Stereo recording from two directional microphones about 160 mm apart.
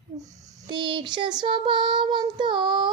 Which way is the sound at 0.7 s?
30° right (ahead or behind).